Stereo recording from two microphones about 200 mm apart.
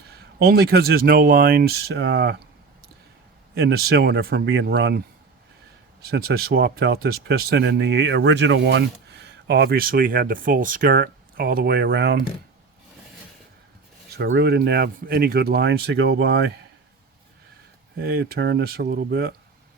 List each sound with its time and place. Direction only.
0.1 s speech: 50° right (ahead or behind)
3.5 s speech: 55° right (ahead or behind)
6.1 s speech: 50° right (ahead or behind)
14.1 s speech: 55° right (ahead or behind)
17.9 s speech: 50° right (ahead or behind)